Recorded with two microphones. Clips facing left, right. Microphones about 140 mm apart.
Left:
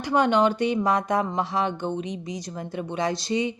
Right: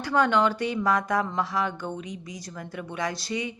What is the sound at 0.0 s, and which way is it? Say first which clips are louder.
A woman's voice: left 2 dB; 20° left (ahead or behind).